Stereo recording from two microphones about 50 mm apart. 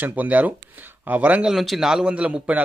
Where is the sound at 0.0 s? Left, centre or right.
Right.